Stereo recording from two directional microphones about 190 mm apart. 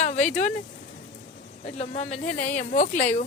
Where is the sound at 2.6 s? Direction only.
40° left (ahead or behind).